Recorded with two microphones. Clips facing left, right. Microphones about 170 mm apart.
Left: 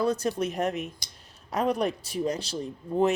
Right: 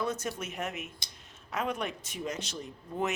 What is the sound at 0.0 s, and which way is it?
Speech, 35° left (ahead or behind).